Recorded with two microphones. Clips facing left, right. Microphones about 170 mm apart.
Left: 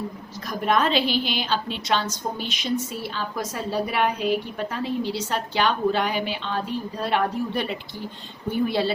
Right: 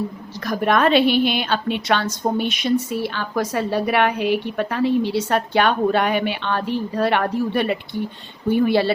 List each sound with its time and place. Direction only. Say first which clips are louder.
0.3 s a woman's voice: right 4 dB; 70° right (ahead or behind)